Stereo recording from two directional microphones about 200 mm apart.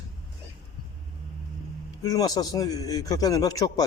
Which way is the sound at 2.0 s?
20° left (ahead or behind).